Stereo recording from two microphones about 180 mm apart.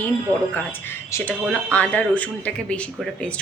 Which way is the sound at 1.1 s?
10° left (ahead or behind).